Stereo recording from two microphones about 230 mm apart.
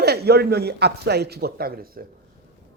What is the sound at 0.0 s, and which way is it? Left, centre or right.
A man's voice, right.